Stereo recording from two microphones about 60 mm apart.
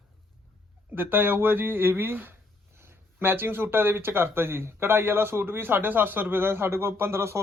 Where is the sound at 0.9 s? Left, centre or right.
Right.